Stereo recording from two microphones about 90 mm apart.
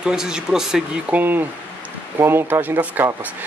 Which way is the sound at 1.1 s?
20° right (ahead or behind).